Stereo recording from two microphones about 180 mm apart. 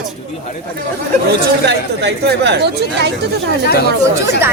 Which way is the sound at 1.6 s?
70° right (ahead or behind).